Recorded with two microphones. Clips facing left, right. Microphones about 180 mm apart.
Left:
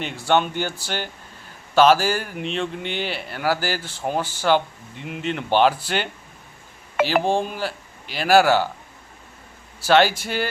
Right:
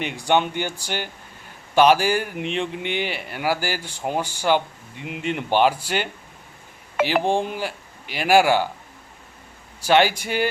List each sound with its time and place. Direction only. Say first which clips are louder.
0.0 s speech: even; 15° right (ahead or behind)
9.8 s speech: left 1 dB; 15° right (ahead or behind)